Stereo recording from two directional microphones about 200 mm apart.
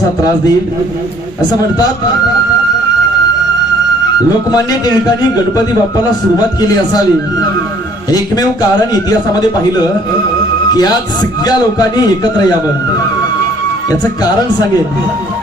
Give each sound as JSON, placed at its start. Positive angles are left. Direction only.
{"t": 4.5, "sound": "a man's voice", "side_deg": 20}
{"t": 10.8, "sound": "a man's voice", "side_deg": 20}